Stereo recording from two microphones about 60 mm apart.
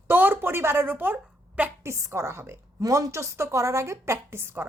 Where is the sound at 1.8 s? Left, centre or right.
Right.